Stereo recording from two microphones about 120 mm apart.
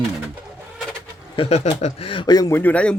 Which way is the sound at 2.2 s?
35° left (ahead or behind).